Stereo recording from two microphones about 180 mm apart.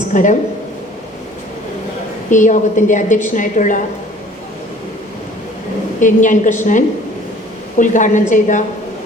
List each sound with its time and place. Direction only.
0.1 s speech: 45° left (ahead or behind)
2.3 s a woman's voice: 45° left (ahead or behind)
6.0 s a woman's voice: 45° left (ahead or behind)